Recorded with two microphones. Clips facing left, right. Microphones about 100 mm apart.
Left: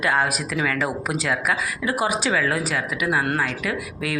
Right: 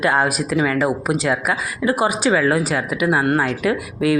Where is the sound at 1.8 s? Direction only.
35° right (ahead or behind).